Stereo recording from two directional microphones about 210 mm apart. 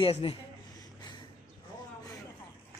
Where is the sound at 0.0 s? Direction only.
25° left (ahead or behind).